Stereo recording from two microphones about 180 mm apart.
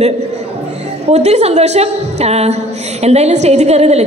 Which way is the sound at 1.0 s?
35° right (ahead or behind).